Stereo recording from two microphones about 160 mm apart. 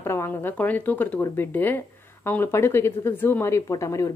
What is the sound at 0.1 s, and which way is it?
Speech, 15° left (ahead or behind).